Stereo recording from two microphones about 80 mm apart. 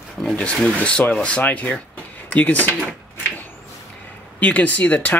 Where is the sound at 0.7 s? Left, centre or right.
Centre.